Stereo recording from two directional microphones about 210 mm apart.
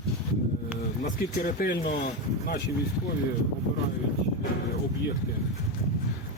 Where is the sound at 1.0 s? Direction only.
40° left (ahead or behind).